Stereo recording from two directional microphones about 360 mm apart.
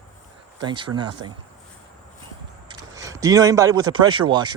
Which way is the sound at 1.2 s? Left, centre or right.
Right.